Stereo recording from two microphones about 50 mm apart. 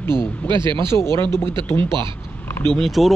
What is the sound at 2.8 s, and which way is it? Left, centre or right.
Speech, centre.